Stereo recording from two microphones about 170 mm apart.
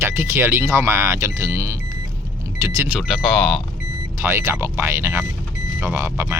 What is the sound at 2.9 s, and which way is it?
Speech, centre (ahead or behind).